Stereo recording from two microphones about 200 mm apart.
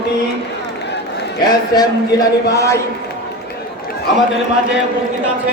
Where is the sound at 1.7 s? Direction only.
20° left (ahead or behind).